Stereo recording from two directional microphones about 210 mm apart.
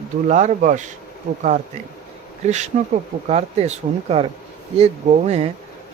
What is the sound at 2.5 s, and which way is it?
Speech, 35° right (ahead or behind).